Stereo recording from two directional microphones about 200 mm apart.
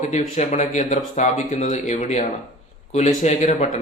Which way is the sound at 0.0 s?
35° left (ahead or behind).